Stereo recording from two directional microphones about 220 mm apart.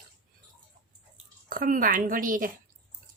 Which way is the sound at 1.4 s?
40° right (ahead or behind).